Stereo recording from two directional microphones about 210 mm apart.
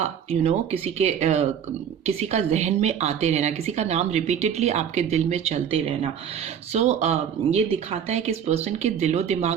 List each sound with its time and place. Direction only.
0.0 s a woman's voice: 30° right (ahead or behind)